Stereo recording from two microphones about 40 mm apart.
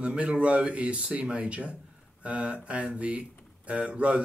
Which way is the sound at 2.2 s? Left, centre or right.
Right.